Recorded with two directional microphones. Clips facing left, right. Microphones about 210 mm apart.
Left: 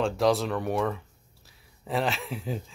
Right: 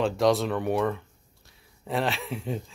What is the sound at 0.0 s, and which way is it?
Speech, centre (ahead or behind).